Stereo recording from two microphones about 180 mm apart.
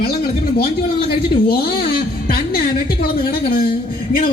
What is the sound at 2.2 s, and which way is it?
A woman's voice, 55° left (ahead or behind).